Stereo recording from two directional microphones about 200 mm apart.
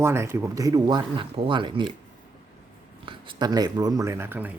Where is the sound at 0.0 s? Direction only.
10° right (ahead or behind).